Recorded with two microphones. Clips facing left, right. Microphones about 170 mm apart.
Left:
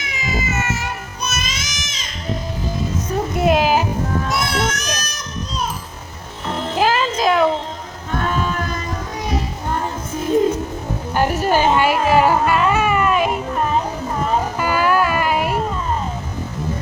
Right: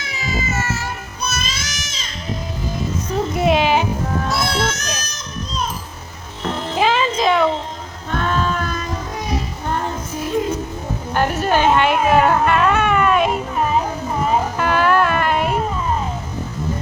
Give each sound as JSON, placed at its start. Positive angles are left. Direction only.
{"t": 0.0, "sound": "music", "side_deg": 20}
{"t": 3.3, "sound": "a sound", "side_deg": 0}
{"t": 4.3, "sound": "children playing", "side_deg": 15}
{"t": 6.7, "sound": "music", "side_deg": 5}
{"t": 11.1, "sound": "a sound", "side_deg": 10}
{"t": 14.6, "sound": "music", "side_deg": 5}